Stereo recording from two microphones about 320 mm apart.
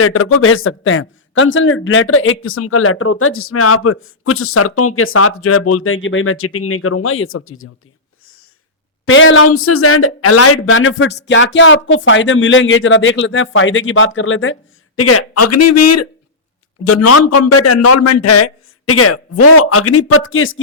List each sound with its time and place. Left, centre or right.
0.0 s a man's voice: left
9.0 s a man's voice: left